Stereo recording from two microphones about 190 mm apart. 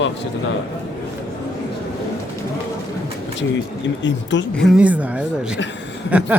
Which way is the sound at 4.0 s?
70° left (ahead or behind).